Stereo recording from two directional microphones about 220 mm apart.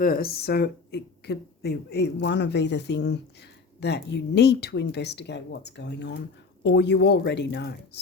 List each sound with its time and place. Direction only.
0.0 s speech: 40° left (ahead or behind)